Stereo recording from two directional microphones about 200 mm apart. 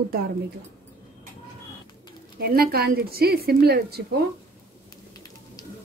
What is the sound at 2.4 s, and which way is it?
A woman's voice, 50° right (ahead or behind).